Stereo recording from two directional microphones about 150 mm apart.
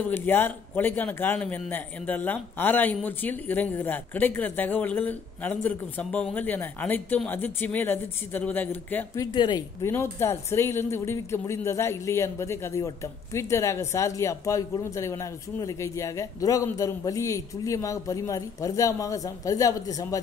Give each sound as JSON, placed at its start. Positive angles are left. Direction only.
{"t": 0.0, "sound": "speech", "side_deg": 15}
{"t": 9.2, "sound": "speech", "side_deg": 30}